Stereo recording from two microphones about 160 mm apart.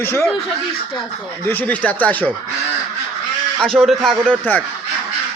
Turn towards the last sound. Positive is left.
turn(degrees=0)  # may be behind; listen again after turning